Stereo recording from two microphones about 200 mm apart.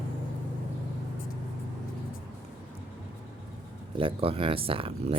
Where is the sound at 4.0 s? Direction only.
25° right (ahead or behind).